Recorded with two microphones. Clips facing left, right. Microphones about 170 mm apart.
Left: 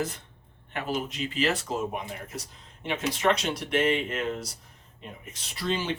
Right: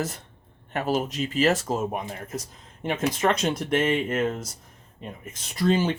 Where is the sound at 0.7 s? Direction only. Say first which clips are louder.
Right 5 dB; 45° right (ahead or behind).